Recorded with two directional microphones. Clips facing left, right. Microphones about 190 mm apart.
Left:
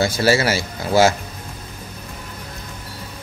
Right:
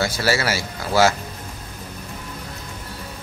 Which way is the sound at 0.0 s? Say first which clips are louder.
Left 4 dB; 25° left (ahead or behind).